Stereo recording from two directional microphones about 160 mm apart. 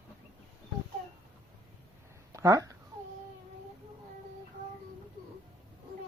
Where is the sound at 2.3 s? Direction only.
20° right (ahead or behind).